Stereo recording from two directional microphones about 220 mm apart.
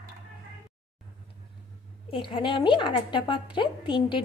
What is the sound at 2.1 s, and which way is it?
A woman's voice, 25° left (ahead or behind).